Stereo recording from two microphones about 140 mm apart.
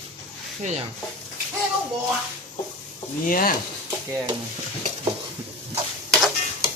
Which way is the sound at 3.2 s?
90° left.